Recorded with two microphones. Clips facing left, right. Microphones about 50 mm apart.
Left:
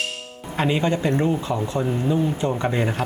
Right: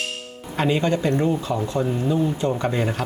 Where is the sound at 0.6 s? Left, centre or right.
Centre.